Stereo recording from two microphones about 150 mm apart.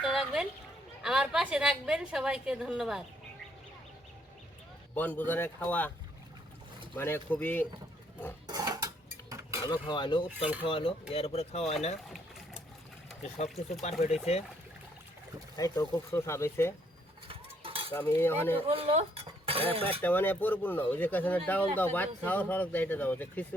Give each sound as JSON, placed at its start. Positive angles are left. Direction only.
{"t": 0.0, "sound": "a sound", "side_deg": 0}
{"t": 1.0, "sound": "a woman's voice", "side_deg": -5}
{"t": 4.9, "sound": "speech", "side_deg": 10}
{"t": 6.9, "sound": "speech", "side_deg": 15}
{"t": 8.4, "sound": "a sound", "side_deg": -25}
{"t": 9.6, "sound": "speech", "side_deg": 30}
{"t": 10.2, "sound": "speech", "side_deg": -10}
{"t": 10.7, "sound": "speech", "side_deg": 35}
{"t": 13.2, "sound": "speech", "side_deg": 45}
{"t": 15.5, "sound": "speech", "side_deg": 20}
{"t": 17.2, "sound": "cutlery", "side_deg": -35}
{"t": 17.9, "sound": "speech", "side_deg": 15}
{"t": 18.7, "sound": "cutlery", "side_deg": -40}
{"t": 19.9, "sound": "speech", "side_deg": 10}